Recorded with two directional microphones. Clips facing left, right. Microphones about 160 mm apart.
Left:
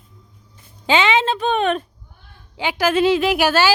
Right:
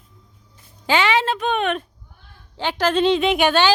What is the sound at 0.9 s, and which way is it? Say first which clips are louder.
Speech: left 2 dB; 20° left (ahead or behind).